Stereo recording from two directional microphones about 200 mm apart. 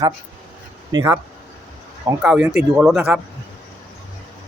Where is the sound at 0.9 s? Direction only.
10° right (ahead or behind).